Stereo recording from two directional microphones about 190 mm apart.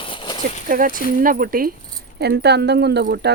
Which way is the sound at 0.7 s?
45° right (ahead or behind).